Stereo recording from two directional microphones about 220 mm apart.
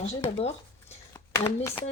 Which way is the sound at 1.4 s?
10° left (ahead or behind).